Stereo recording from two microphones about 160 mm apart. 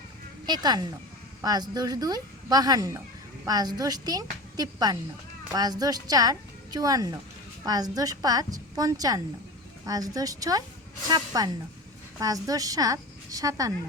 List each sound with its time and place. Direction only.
0.4 s a woman's voice: 25° right (ahead or behind)